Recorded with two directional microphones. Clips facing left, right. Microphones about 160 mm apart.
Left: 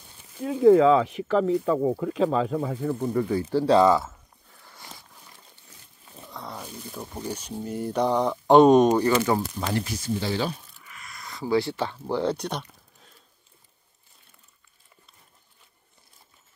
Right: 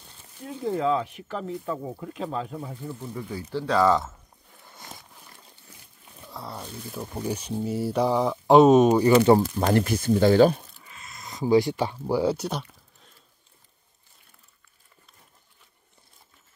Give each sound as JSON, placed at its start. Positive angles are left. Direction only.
{"t": 0.5, "sound": "speech", "side_deg": 90}
{"t": 3.5, "sound": "speech", "side_deg": 30}
{"t": 4.6, "sound": "a sound", "side_deg": -20}
{"t": 6.2, "sound": "a sound", "side_deg": 0}
{"t": 6.6, "sound": "speech", "side_deg": 0}
{"t": 9.6, "sound": "speech", "side_deg": -55}
{"t": 10.9, "sound": "speech", "side_deg": -25}